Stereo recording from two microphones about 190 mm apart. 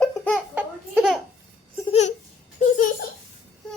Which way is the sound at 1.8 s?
35° left (ahead or behind).